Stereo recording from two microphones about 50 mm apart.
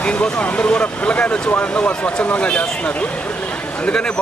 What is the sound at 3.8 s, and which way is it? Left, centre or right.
Speech, centre.